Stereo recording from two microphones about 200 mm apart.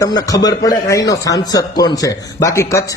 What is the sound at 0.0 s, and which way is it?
A man's voice, 20° left (ahead or behind).